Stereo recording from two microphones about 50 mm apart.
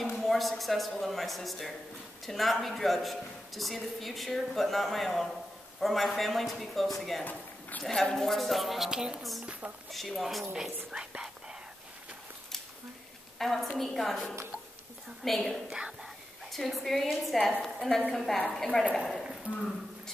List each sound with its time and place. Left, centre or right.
0.0 s a woman's voice: centre
8.9 s a woman's voice: centre
9.8 s a woman's voice: centre
10.5 s speech: centre
13.4 s a woman's voice: centre
15.7 s speech: centre
16.5 s a woman's voice: centre